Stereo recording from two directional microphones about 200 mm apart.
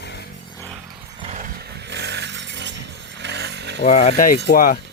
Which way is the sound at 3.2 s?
55° right (ahead or behind).